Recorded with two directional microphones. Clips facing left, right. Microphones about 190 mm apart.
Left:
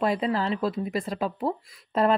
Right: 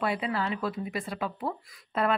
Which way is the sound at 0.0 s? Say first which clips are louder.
Left 5 dB; 35° left (ahead or behind).